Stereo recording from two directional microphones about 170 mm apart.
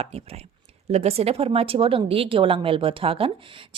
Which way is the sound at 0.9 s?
35° right (ahead or behind).